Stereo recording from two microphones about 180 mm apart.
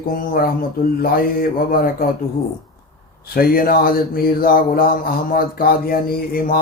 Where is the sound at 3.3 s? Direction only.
55° left (ahead or behind).